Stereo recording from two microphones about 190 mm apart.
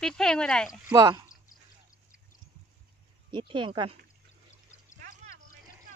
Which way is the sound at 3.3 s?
25° right (ahead or behind).